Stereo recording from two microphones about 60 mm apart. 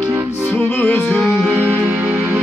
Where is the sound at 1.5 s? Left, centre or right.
Right.